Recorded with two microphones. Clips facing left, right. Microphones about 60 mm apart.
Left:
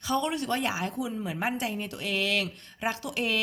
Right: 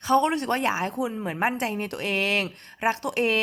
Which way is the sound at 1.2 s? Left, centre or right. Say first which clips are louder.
Right 5 dB; right.